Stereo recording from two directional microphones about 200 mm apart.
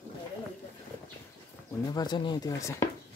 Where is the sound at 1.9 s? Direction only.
20° left (ahead or behind).